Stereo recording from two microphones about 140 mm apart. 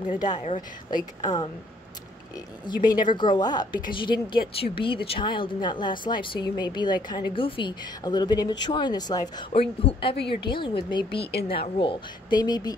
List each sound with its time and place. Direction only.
1.2 s a woman's voice: 30° left (ahead or behind)
9.5 s a woman's voice: 45° left (ahead or behind); by 12.7 s 30° left (ahead or behind)